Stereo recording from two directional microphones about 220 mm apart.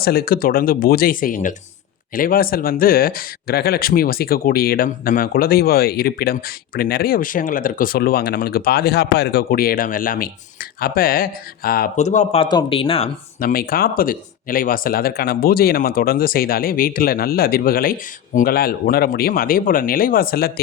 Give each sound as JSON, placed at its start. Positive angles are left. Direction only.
{"t": 0.0, "sound": "speech", "side_deg": 45}
{"t": 13.4, "sound": "speech", "side_deg": 40}